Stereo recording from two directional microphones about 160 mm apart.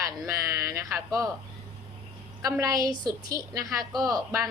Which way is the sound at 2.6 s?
25° right (ahead or behind).